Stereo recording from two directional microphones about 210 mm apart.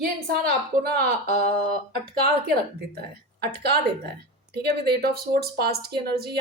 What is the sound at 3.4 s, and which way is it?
A woman's voice, 50° right (ahead or behind).